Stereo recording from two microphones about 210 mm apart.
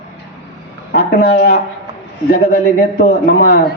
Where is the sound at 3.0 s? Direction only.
50° left (ahead or behind).